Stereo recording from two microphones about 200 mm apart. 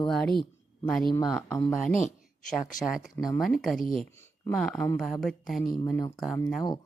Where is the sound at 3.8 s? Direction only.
45° left (ahead or behind).